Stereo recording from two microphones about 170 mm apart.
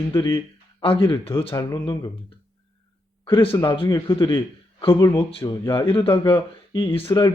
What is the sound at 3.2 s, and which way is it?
Speech, 30° left (ahead or behind).